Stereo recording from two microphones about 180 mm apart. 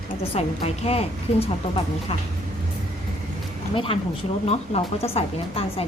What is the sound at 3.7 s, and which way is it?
A woman's voice, 30° left (ahead or behind).